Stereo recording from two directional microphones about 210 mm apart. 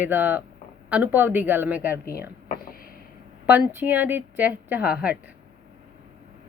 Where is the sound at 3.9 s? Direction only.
10° right (ahead or behind).